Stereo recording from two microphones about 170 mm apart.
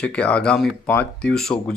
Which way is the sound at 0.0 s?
5° left (ahead or behind).